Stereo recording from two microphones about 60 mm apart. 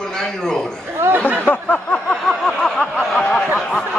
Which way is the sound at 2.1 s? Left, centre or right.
Centre.